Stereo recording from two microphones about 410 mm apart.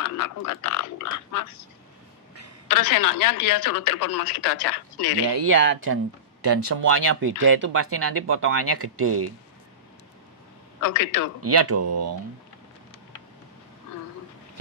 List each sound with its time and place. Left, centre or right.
0.0 s speech: left
2.7 s speech: left
5.3 s speech: right
10.8 s speech: left
11.4 s speech: right